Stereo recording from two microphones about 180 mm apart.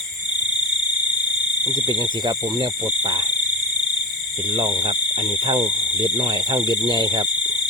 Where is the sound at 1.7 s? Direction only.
25° right (ahead or behind).